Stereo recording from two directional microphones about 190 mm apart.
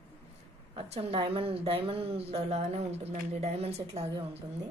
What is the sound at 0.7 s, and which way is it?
A woman's voice, 30° right (ahead or behind).